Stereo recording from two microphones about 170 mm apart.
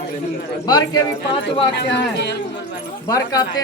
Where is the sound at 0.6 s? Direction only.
25° left (ahead or behind).